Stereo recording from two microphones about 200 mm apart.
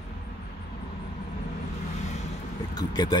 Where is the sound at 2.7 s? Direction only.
20° left (ahead or behind).